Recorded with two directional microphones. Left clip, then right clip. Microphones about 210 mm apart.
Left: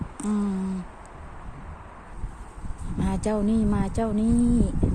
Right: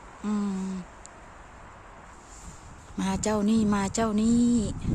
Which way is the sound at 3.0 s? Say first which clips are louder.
Left 1 dB; 15° right (ahead or behind).